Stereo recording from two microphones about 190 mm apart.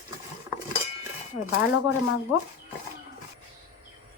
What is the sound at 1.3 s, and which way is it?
Speech, 70° left (ahead or behind).